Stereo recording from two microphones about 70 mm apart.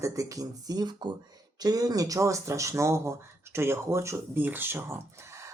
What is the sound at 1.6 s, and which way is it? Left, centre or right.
Speech, right.